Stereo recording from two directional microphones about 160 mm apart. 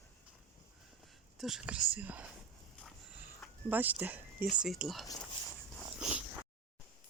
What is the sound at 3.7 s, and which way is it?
Speech, 10° right (ahead or behind).